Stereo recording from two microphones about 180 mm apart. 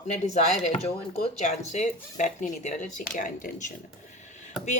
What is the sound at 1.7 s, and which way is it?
Speech, 40° left (ahead or behind).